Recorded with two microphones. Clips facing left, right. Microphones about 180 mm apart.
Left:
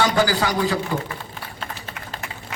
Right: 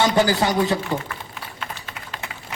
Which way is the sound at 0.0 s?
25° right (ahead or behind).